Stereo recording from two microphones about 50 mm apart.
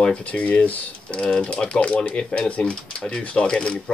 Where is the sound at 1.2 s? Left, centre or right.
Centre.